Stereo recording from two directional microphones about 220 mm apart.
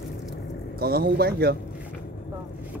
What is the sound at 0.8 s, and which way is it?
Speech, 45° right (ahead or behind).